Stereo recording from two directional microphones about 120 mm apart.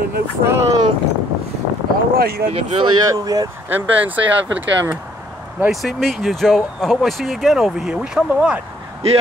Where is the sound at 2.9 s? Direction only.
30° right (ahead or behind).